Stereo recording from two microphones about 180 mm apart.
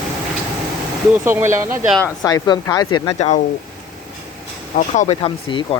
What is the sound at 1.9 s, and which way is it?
Speech, 5° left (ahead or behind).